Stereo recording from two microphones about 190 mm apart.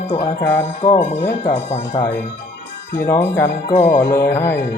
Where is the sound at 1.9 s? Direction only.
15° left (ahead or behind).